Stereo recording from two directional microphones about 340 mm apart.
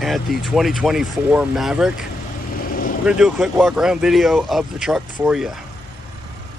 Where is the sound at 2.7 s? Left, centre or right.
Left.